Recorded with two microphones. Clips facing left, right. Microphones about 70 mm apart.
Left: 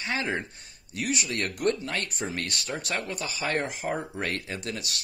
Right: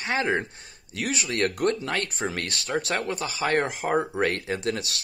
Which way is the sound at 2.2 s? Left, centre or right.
Right.